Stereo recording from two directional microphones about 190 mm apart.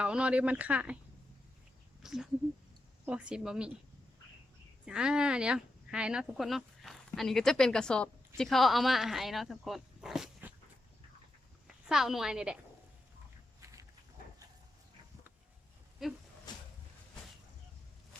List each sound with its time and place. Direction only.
0.0 s speech: 5° right (ahead or behind)
2.0 s speech: 5° right (ahead or behind)
4.9 s speech: 5° right (ahead or behind)
11.9 s speech: centre (ahead or behind)
13.6 s a sound: 15° right (ahead or behind)
16.0 s speech: centre (ahead or behind)